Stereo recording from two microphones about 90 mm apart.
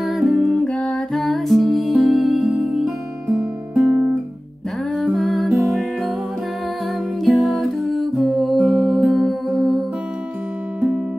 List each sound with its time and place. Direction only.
0.0 s music: centre (ahead or behind)
0.7 s music: 10° left (ahead or behind); by 2.9 s 5° right (ahead or behind)
3.3 s guitar: 20° right (ahead or behind)
4.9 s music: 5° left (ahead or behind)
7.2 s music: centre (ahead or behind)